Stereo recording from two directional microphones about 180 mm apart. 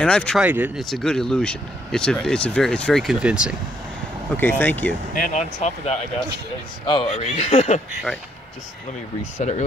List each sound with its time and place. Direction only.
0.0 s speech: 5° left (ahead or behind)
0.4 s speech: 10° right (ahead or behind)
0.8 s speech: centre (ahead or behind)
4.4 s speech: 10° left (ahead or behind)
5.1 s speech: 45° left (ahead or behind)